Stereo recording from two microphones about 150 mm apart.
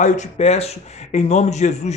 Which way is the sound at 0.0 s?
50° left (ahead or behind).